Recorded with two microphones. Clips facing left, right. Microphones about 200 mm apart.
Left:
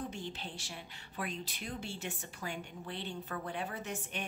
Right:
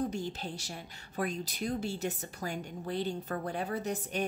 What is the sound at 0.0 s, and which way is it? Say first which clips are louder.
A woman's voice: right 7 dB; 40° right (ahead or behind).